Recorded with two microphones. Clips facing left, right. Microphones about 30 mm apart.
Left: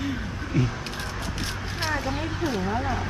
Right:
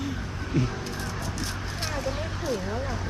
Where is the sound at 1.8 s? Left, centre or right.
Left.